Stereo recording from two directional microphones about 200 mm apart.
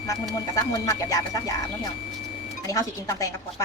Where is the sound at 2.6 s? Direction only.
15° left (ahead or behind).